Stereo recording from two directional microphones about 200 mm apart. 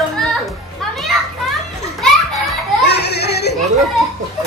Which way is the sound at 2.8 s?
55° left (ahead or behind).